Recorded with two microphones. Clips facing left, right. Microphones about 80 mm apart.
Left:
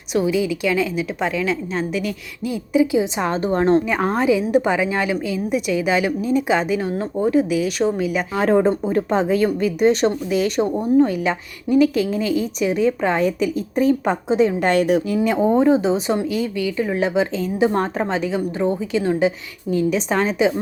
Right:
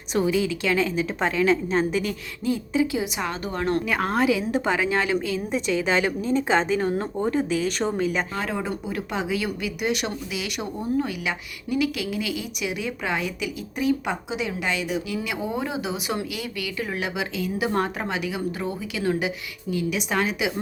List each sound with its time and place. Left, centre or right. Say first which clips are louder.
0.1 s a woman's voice: left 3 dB; centre
2.8 s a woman's voice: left 7 dB; left; by 8.4 s centre
8.4 s a woman's voice: left 12 dB; left
10.8 s a woman's voice: left 9 dB; left
11.1 s a woman's voice: left 8 dB; left